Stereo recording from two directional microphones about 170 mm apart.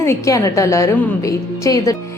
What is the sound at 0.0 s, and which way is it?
A woman's voice, 15° left (ahead or behind).